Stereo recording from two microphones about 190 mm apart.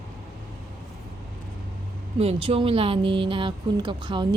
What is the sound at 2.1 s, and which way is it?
A woman's voice, 30° right (ahead or behind).